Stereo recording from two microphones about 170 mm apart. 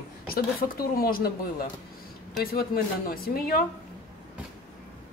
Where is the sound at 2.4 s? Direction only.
60° left (ahead or behind).